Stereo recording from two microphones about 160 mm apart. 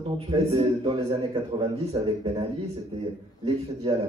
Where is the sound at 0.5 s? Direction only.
35° right (ahead or behind).